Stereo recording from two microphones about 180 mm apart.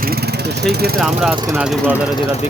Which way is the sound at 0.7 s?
60° right (ahead or behind).